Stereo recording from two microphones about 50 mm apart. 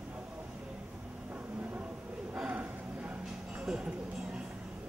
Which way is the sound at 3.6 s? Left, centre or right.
Centre.